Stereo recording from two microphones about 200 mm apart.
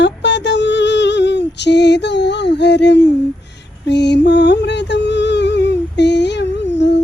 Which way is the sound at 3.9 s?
60° left (ahead or behind).